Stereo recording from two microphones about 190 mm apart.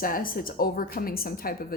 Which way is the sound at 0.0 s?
50° left (ahead or behind).